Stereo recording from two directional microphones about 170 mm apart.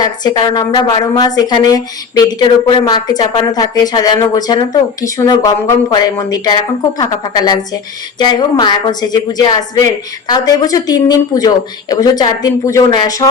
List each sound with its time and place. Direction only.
0.0 s speech: 25° left (ahead or behind)